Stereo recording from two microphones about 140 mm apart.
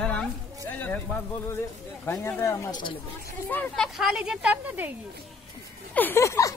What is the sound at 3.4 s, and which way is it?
Speech, 15° left (ahead or behind).